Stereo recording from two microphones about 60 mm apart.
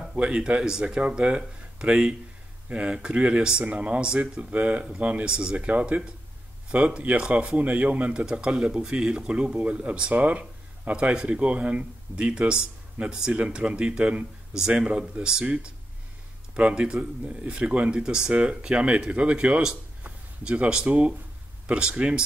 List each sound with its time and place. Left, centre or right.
0.1 s speech: centre
20.0 s a sound: right
21.6 s speech: centre